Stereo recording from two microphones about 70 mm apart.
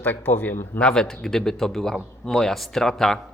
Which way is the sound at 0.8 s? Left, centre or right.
Centre.